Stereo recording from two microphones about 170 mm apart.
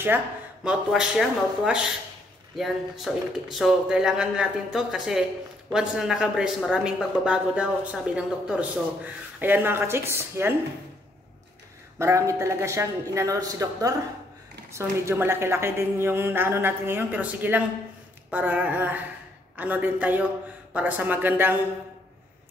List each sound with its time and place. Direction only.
0.7 s a woman's voice: 5° right (ahead or behind)
12.0 s a woman's voice: 15° right (ahead or behind)